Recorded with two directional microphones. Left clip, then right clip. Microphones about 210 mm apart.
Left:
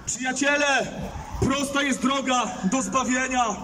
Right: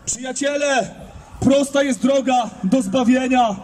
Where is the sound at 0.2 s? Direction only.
45° right (ahead or behind).